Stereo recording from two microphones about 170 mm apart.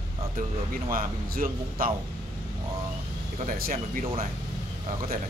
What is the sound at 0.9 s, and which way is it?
Speech, 55° right (ahead or behind).